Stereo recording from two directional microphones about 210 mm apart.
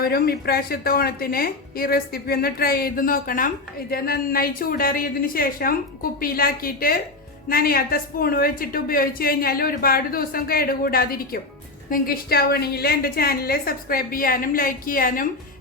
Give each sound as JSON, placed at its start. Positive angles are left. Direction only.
{"t": 0.0, "sound": "a woman's voice", "side_deg": 45}